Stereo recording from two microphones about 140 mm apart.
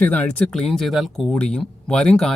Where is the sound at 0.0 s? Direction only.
10° left (ahead or behind).